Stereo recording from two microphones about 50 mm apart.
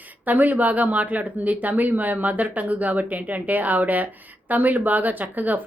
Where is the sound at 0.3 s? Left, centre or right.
Right.